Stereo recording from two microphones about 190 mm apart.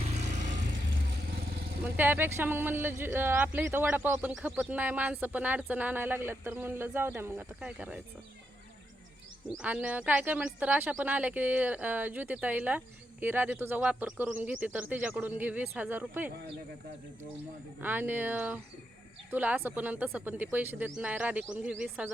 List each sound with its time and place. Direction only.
0.1 s vehicle: 40° right (ahead or behind)
0.9 s vehicle: 55° right (ahead or behind)
1.8 s speech: 10° right (ahead or behind)
9.6 s speech: 5° right (ahead or behind)
17.7 s speech: 10° right (ahead or behind)